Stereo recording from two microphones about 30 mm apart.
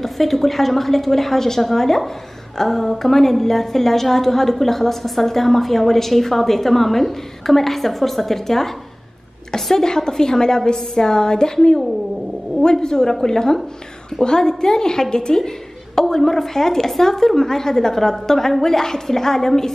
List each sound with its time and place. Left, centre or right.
0.0 s a woman's voice: centre
12.8 s a woman's voice: left